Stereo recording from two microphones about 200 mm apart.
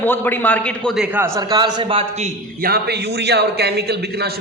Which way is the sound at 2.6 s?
50° right (ahead or behind).